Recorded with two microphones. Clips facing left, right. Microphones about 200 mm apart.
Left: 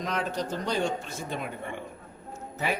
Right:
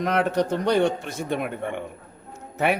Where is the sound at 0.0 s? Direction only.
65° right (ahead or behind).